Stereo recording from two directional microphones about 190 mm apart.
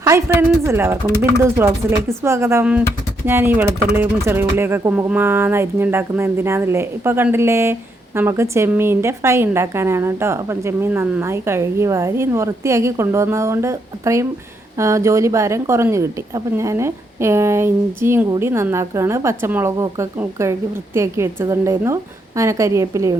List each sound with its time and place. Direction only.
0.1 s speech: 15° right (ahead or behind)